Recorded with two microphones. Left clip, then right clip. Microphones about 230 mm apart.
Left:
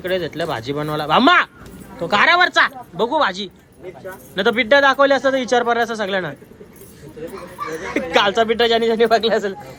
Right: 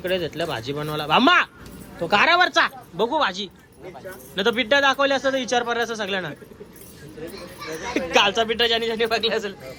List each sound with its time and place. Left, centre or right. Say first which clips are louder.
0.0 s a man's voice: left 3 dB; centre
7.7 s a man's voice: left 2 dB; centre